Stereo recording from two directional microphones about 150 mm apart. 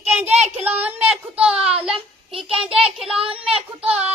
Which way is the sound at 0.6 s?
10° right (ahead or behind).